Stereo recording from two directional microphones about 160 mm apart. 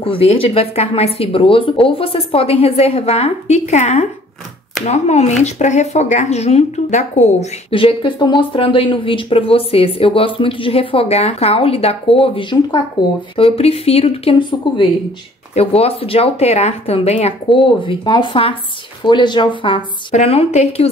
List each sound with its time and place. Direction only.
0.0 s speech: 35° left (ahead or behind)
20.1 s speech: 40° left (ahead or behind)